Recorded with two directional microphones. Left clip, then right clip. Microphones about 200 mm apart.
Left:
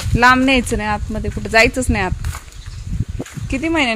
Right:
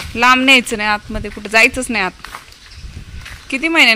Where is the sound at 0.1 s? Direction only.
15° left (ahead or behind).